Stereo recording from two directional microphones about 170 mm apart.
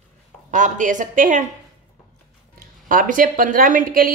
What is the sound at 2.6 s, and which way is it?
Speech, 55° right (ahead or behind).